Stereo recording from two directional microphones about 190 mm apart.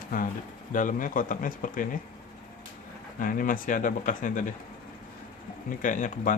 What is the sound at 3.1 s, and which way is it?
Speech, 45° left (ahead or behind).